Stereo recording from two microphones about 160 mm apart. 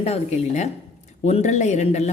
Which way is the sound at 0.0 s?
40° left (ahead or behind).